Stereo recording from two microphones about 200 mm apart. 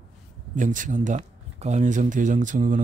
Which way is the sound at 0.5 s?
40° right (ahead or behind).